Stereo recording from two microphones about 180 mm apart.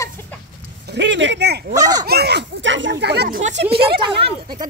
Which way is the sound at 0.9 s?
75° right (ahead or behind).